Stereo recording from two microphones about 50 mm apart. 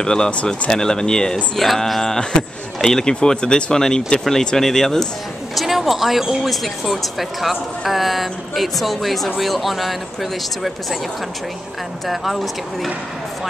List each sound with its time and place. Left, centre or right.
0.0 s speech: centre
0.3 s speech: left
0.7 s speech: centre
5.5 s speech: centre
12.1 s speech: centre